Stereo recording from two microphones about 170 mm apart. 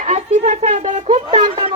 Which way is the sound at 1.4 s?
30° right (ahead or behind).